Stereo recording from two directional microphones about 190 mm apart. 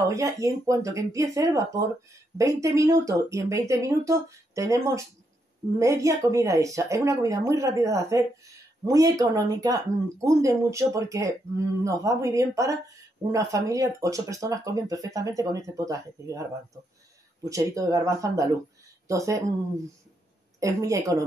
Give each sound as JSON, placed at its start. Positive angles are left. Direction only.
{"t": 0.0, "sound": "speech", "side_deg": -15}
{"t": 17.5, "sound": "speech", "side_deg": -15}
{"t": 20.6, "sound": "speech", "side_deg": -15}